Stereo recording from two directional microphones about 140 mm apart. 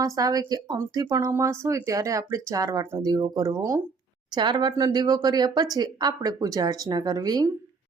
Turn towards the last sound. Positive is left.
turn(degrees=-25)  # may be behind; listen again after turning